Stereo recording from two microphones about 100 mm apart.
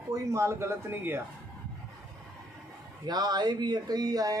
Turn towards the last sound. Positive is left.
turn(degrees=-40)  # may be behind; listen again after turning